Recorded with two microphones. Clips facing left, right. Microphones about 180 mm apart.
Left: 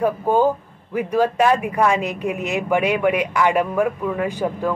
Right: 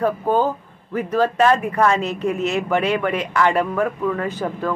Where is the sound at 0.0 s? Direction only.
10° left (ahead or behind).